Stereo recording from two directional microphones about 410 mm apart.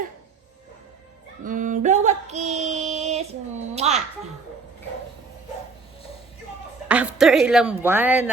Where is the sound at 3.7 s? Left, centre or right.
Centre.